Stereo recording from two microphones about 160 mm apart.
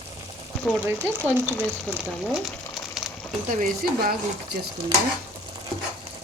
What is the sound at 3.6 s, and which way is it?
Speech, 70° right (ahead or behind).